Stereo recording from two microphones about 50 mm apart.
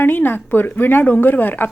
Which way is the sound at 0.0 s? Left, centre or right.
Left.